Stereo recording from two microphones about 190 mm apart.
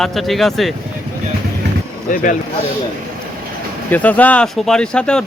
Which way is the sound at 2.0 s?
45° left (ahead or behind).